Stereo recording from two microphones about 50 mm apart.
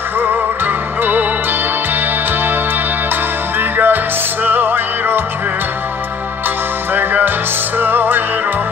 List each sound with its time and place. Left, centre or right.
0.2 s music: right
3.5 s music: right
6.9 s music: right